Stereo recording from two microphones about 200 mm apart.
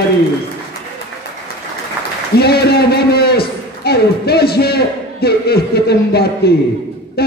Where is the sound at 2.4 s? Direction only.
55° left (ahead or behind).